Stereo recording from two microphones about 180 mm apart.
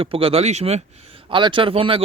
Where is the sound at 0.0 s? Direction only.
30° right (ahead or behind).